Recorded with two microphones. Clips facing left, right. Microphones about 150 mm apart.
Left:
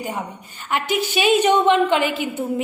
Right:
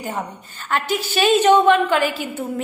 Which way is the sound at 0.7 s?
15° left (ahead or behind).